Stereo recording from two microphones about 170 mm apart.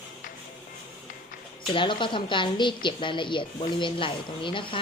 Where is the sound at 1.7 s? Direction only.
30° left (ahead or behind).